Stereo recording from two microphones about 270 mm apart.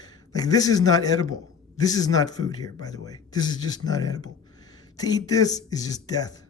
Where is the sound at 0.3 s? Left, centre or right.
Centre.